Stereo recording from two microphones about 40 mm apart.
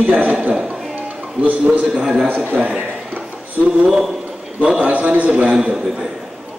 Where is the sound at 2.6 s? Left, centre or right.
Right.